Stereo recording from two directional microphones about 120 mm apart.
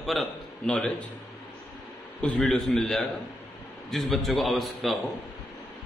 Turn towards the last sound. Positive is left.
turn(degrees=0)  # may be behind; listen again after turning